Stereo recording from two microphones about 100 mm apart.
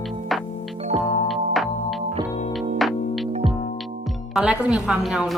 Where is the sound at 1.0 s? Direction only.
Centre (ahead or behind).